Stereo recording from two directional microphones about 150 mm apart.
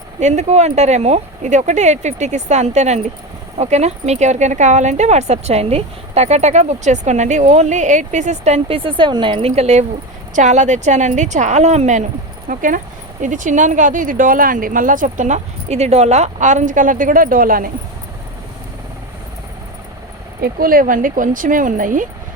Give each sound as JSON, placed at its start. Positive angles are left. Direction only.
{"t": 0.2, "sound": "speech", "side_deg": -50}
{"t": 20.4, "sound": "speech", "side_deg": -70}